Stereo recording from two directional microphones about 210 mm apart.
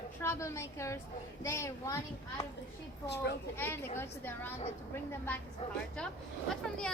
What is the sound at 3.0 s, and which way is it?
Speech, 55° left (ahead or behind).